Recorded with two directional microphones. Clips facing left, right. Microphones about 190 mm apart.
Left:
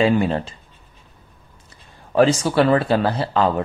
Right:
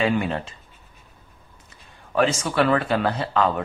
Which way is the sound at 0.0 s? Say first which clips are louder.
Left 5 dB; 30° left (ahead or behind).